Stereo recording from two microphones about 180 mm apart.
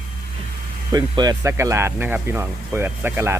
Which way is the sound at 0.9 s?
20° right (ahead or behind).